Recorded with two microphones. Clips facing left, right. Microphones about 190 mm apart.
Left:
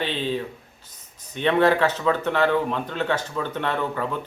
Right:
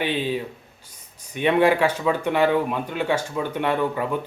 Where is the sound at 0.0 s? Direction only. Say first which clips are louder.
Right 2 dB; 10° right (ahead or behind).